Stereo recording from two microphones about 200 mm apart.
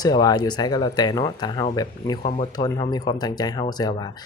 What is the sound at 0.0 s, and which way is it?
Speech, 20° left (ahead or behind).